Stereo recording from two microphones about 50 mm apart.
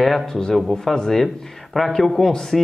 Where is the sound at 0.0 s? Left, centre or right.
Centre.